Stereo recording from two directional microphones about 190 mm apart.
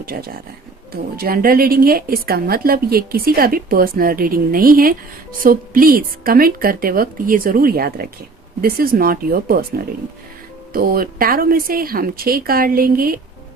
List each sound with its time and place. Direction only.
0.0 s a woman's voice: 50° right (ahead or behind)